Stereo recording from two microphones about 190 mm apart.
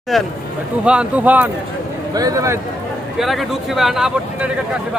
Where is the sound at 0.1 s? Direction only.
Centre (ahead or behind); by 2.6 s 15° right (ahead or behind).